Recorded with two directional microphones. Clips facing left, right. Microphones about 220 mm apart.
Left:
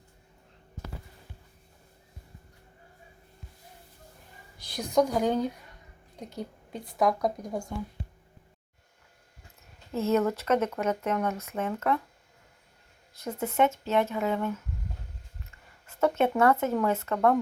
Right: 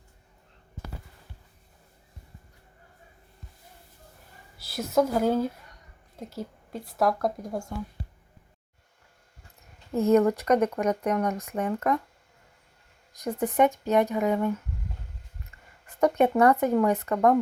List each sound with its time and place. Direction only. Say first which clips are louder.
4.5 s a woman's voice: right 1 dB; 5° right (ahead or behind)
9.9 s speech: right 5 dB; 15° right (ahead or behind)
13.1 s speech: right 3 dB; 15° right (ahead or behind)
16.0 s speech: right 3 dB; 15° right (ahead or behind)